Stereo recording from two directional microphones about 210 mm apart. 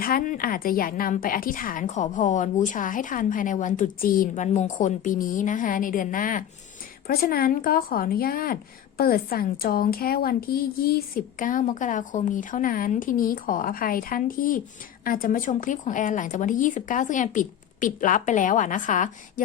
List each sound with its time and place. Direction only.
0.0 s a woman's voice: 40° left (ahead or behind)